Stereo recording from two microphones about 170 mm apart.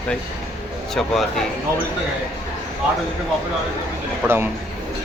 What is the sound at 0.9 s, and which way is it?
Speech, centre (ahead or behind).